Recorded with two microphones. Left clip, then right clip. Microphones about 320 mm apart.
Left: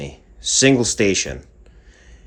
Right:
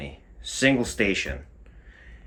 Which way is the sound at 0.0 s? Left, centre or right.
Centre.